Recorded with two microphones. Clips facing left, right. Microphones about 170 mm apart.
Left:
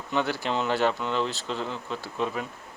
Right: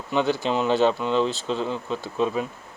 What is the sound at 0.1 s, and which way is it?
Speech, 20° right (ahead or behind).